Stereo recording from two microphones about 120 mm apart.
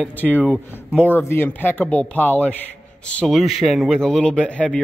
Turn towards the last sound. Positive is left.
turn(degrees=10)  # may be behind; listen again after turning